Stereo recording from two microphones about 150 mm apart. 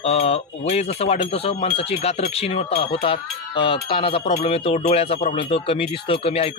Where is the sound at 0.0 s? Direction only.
45° left (ahead or behind).